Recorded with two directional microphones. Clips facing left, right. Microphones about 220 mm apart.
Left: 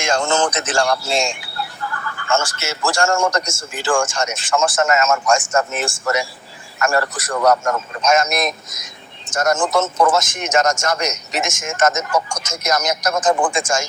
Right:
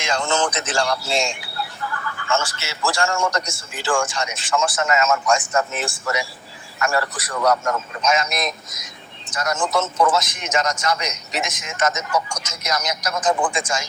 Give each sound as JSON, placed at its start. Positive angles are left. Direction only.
{"t": 0.0, "sound": "a man's voice", "side_deg": 45}